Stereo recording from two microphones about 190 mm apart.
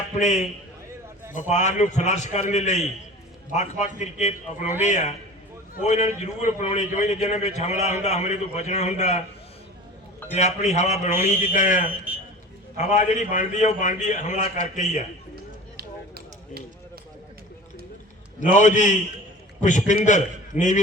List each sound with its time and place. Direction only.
0.2 s a man's voice: 40° left (ahead or behind)
10.3 s a man's voice: 35° left (ahead or behind)
11.9 s a man's voice: 10° right (ahead or behind)
12.7 s a man's voice: 40° left (ahead or behind)
15.8 s a sound: 55° right (ahead or behind)
18.3 s a man's voice: 40° left (ahead or behind)